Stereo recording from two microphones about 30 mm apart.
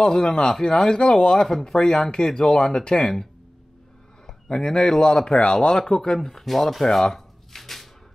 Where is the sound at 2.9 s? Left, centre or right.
Centre.